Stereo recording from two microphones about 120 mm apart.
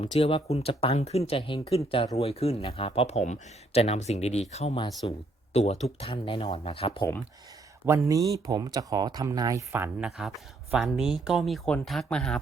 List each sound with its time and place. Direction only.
0.0 s speech: 55° left (ahead or behind)
0.9 s speech: 60° left (ahead or behind); by 1.8 s 45° left (ahead or behind)
2.1 s speech: 55° left (ahead or behind)
5.0 s speech: 45° left (ahead or behind)
5.5 s speech: 60° left (ahead or behind)
6.0 s speech: 45° left (ahead or behind)
7.9 s speech: 25° right (ahead or behind)
10.0 s speech: 5° right (ahead or behind)